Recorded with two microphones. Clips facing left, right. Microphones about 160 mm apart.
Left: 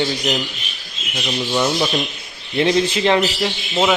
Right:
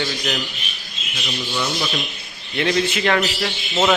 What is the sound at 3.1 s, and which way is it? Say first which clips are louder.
Speech: left 3 dB; 20° left (ahead or behind).